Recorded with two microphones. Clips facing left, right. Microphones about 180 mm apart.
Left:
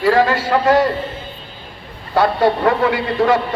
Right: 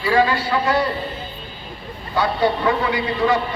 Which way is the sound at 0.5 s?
60° left (ahead or behind).